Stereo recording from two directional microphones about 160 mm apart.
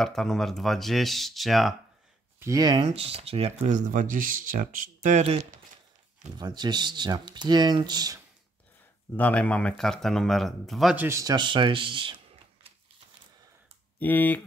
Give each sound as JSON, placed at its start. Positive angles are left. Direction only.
{"t": 0.0, "sound": "speech", "side_deg": 0}
{"t": 2.4, "sound": "speech", "side_deg": -25}
{"t": 2.9, "sound": "speech", "side_deg": -40}
{"t": 6.3, "sound": "speech", "side_deg": -25}
{"t": 9.1, "sound": "speech", "side_deg": 10}
{"t": 11.1, "sound": "speech", "side_deg": -20}
{"t": 13.9, "sound": "speech", "side_deg": 10}